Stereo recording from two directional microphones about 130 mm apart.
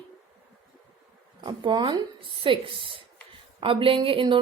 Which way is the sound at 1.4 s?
40° right (ahead or behind).